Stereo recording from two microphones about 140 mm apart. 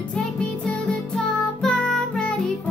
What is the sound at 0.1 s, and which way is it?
Music, 5° left (ahead or behind).